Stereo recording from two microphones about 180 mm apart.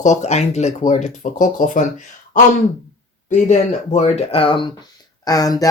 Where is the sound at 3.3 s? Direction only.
40° left (ahead or behind); by 5.6 s 20° left (ahead or behind).